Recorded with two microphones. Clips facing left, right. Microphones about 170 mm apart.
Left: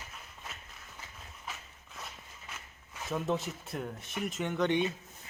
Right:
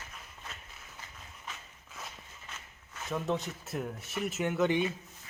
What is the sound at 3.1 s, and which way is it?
Speech, centre (ahead or behind).